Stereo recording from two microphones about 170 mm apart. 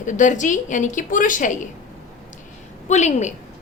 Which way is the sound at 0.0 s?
50° left (ahead or behind).